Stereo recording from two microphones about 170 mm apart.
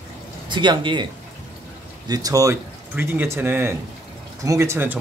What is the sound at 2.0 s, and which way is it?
Speech, 20° right (ahead or behind).